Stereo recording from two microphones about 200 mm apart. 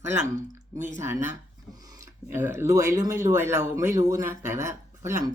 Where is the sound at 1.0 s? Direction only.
10° right (ahead or behind).